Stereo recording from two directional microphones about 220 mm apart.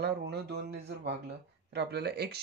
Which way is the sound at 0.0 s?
50° right (ahead or behind).